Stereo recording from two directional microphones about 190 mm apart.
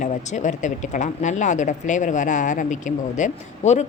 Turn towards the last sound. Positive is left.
turn(degrees=40)  # may be behind; listen again after turning